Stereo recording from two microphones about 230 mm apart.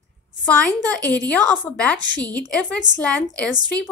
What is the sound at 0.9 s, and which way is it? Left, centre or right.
A woman's voice, centre.